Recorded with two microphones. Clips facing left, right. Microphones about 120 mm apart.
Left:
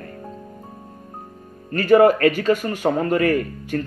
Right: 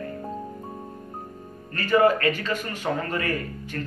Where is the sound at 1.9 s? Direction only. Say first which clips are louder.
Left 6 dB; 55° left (ahead or behind).